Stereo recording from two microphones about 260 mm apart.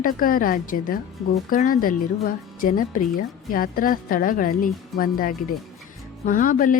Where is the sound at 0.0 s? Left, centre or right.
Left.